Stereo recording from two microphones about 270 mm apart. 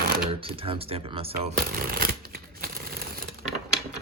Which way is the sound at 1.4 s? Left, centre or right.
Right.